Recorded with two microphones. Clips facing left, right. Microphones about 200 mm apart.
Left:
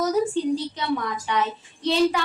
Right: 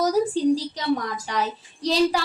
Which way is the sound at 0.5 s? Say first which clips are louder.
Right 2 dB; 35° right (ahead or behind).